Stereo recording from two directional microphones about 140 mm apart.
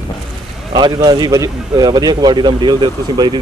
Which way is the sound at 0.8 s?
30° right (ahead or behind).